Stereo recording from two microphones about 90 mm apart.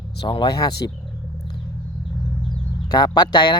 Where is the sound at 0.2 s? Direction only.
55° left (ahead or behind).